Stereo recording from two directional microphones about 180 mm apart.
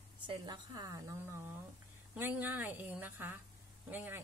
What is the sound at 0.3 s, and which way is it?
Speech, 25° right (ahead or behind).